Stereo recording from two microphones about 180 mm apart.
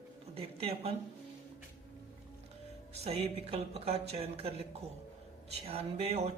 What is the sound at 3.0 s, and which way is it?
Speech, 35° right (ahead or behind).